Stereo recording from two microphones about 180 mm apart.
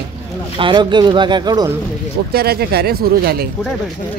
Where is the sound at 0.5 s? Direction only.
25° right (ahead or behind).